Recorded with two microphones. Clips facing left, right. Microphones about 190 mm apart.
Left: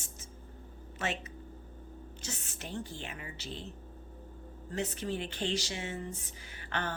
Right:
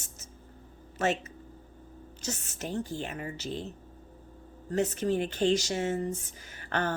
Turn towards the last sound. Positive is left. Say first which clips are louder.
# right 6 dB
turn(degrees=-45)  # may be behind; listen again after turning